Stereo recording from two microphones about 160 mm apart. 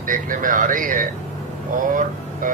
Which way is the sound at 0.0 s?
55° right (ahead or behind).